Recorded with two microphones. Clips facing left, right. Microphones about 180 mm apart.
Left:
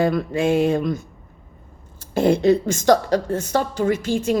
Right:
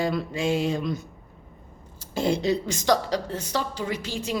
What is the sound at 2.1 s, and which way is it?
A woman's voice, 55° left (ahead or behind).